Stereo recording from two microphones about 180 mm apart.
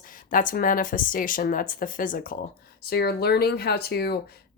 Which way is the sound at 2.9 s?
60° left (ahead or behind).